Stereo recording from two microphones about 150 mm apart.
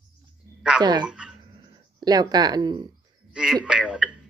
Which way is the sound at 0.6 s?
5° right (ahead or behind).